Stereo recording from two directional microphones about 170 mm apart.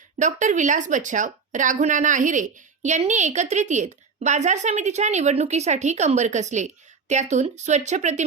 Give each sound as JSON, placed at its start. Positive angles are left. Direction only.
{"t": 0.2, "sound": "speech", "side_deg": -45}